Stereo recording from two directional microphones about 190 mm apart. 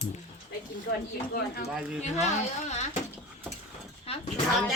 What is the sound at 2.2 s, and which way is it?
Speech, 35° left (ahead or behind).